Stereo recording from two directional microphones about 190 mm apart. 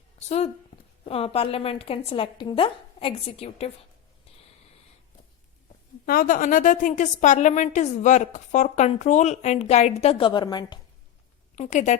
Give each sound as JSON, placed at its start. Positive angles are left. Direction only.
{"t": 0.3, "sound": "a woman's voice", "side_deg": 35}
{"t": 6.1, "sound": "a woman's voice", "side_deg": 45}
{"t": 11.5, "sound": "a woman's voice", "side_deg": 40}